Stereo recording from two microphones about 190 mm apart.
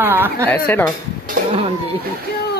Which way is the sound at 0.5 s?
10° left (ahead or behind).